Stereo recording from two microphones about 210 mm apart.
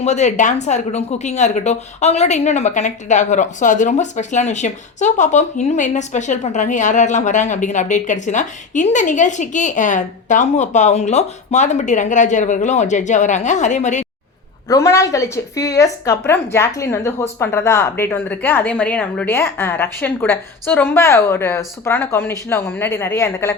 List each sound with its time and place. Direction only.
0.0 s speech: 35° left (ahead or behind)
14.7 s speech: 15° left (ahead or behind)